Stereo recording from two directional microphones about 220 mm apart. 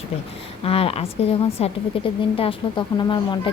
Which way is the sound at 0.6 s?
25° left (ahead or behind).